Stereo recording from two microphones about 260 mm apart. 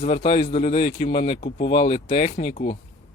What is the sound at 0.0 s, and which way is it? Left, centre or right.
Speech, left.